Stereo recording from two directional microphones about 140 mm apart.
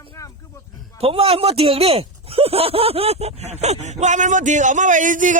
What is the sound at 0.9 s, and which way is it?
Speech, 45° right (ahead or behind).